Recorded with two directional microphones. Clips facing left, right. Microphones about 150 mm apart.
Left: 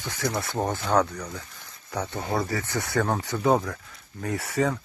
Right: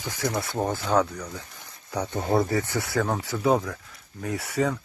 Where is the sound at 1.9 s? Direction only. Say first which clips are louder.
Right 4 dB; 15° right (ahead or behind).